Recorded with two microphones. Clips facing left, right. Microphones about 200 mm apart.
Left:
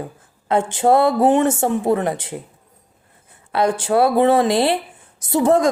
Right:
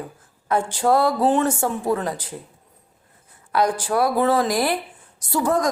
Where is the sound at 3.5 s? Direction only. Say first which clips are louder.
Left 3 dB; 25° left (ahead or behind).